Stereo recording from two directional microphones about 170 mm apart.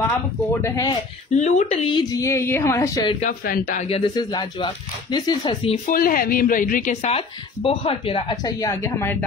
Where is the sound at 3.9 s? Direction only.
25° left (ahead or behind).